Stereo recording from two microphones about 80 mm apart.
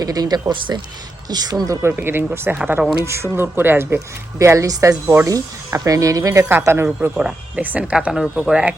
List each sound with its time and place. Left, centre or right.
0.0 s speech: right
1.6 s speech: right
1.9 s speech: right
4.4 s speech: right
6.5 s speech: right
7.2 s speech: centre
8.1 s speech: centre